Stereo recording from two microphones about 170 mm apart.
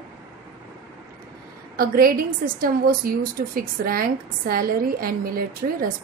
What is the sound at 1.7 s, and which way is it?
A woman's voice, 60° right (ahead or behind).